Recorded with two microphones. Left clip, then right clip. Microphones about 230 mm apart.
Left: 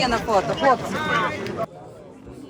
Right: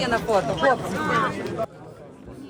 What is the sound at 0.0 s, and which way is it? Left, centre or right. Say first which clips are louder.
Speech: left 1 dB; left.